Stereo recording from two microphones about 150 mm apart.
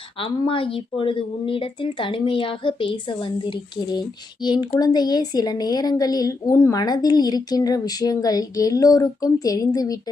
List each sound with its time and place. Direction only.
0.2 s a woman's voice: 35° left (ahead or behind)